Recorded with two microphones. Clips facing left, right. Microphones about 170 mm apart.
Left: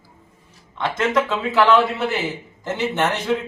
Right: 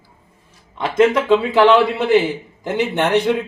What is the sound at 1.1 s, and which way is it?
A man's voice, 15° right (ahead or behind).